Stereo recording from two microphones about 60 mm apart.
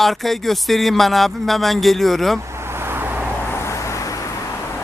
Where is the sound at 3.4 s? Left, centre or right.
Left.